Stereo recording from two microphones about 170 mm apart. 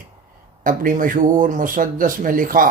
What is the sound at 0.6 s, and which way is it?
Speech, 50° right (ahead or behind).